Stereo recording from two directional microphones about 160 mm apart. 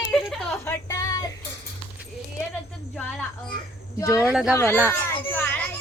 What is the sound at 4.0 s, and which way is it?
Speech, 20° left (ahead or behind).